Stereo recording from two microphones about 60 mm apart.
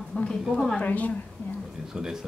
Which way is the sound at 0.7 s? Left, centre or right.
Left.